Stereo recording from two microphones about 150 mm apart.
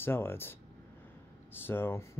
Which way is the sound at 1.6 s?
15° left (ahead or behind).